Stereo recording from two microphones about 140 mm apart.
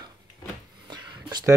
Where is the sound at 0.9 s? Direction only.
30° right (ahead or behind).